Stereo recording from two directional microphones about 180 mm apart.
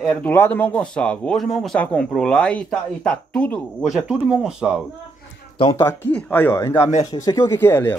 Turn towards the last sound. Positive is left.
turn(degrees=10)  # may be behind; listen again after turning